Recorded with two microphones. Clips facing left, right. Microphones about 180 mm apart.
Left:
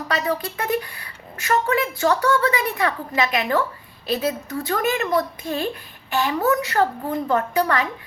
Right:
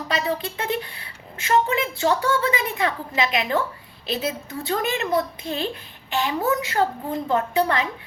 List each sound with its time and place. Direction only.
0.1 s a woman's voice: 20° right (ahead or behind)